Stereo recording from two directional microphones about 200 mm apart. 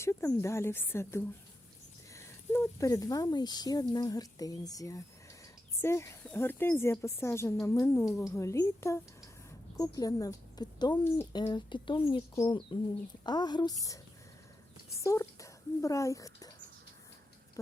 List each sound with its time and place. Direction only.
0.0 s a woman's voice: 15° left (ahead or behind)